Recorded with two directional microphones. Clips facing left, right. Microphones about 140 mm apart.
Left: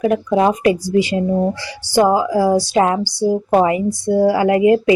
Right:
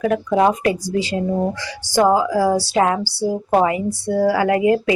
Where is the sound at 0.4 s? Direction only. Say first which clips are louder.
Left 2 dB; 15° left (ahead or behind).